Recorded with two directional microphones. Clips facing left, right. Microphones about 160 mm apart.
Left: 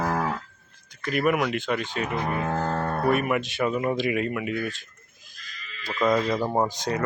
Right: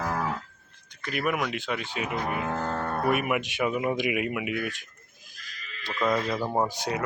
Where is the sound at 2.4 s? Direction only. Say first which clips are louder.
Left 3 dB; 35° left (ahead or behind).